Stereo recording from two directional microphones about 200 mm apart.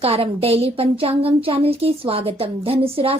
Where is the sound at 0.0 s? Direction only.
30° right (ahead or behind).